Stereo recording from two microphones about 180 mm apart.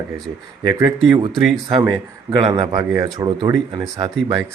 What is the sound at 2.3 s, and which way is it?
Speech, 25° right (ahead or behind).